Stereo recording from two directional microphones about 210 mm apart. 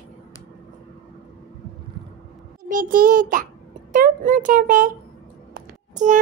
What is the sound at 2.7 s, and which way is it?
A child's voice, 40° right (ahead or behind).